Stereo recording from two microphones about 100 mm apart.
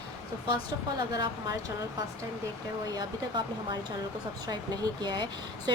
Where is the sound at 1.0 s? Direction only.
45° right (ahead or behind).